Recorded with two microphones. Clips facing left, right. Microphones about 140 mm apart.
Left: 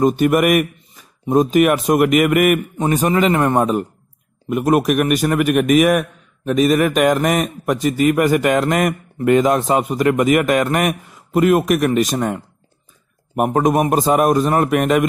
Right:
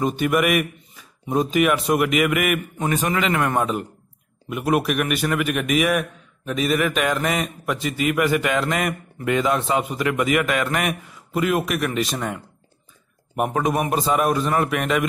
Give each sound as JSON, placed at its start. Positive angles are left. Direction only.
{"t": 0.0, "sound": "a man's voice", "side_deg": 45}
{"t": 2.8, "sound": "a man's voice", "side_deg": 35}
{"t": 4.5, "sound": "a man's voice", "side_deg": 45}
{"t": 13.4, "sound": "a man's voice", "side_deg": 45}